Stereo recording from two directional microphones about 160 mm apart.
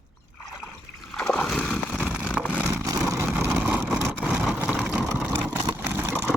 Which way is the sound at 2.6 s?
15° right (ahead or behind).